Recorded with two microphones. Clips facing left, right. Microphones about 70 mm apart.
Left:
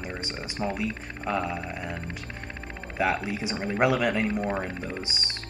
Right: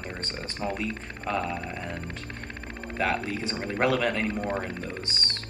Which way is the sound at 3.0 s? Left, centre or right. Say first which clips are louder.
Left 1 dB; centre.